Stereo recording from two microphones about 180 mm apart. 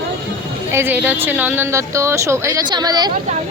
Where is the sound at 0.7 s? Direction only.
10° right (ahead or behind).